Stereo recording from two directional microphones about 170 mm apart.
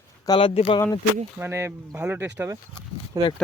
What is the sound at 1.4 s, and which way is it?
Speech, 15° right (ahead or behind).